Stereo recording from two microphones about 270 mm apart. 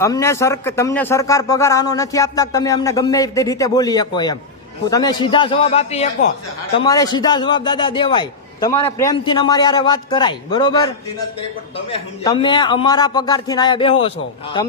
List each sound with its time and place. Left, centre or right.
0.0 s speech: centre